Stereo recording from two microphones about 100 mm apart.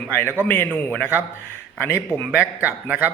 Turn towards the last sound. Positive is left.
turn(degrees=-15)  # may be behind; listen again after turning